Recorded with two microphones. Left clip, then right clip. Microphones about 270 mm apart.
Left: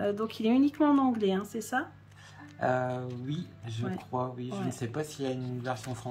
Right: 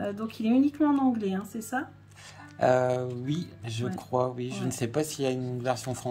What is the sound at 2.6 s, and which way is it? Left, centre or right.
Speech, right.